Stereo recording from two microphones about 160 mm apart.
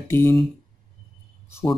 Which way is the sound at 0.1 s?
15° left (ahead or behind).